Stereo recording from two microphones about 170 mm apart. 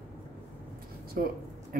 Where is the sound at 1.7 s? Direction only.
55° right (ahead or behind).